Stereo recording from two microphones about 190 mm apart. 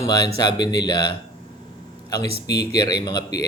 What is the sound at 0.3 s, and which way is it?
Speech, 20° left (ahead or behind).